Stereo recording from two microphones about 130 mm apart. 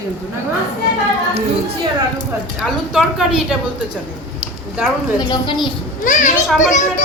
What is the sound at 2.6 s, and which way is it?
Speech, 5° right (ahead or behind).